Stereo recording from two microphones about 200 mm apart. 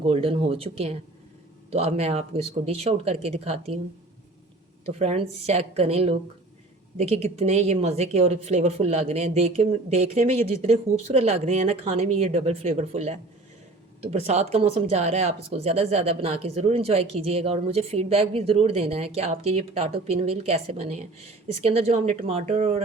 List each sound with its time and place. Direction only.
0.0 s a woman's voice: 30° right (ahead or behind)
4.9 s a woman's voice: 30° right (ahead or behind)